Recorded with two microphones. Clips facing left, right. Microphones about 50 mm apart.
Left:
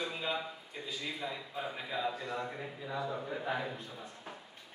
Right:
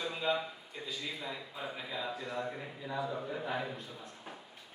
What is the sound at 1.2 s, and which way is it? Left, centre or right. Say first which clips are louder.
A man's voice: left 2 dB; centre.